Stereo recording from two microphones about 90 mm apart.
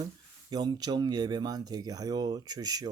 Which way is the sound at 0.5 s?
50° right (ahead or behind).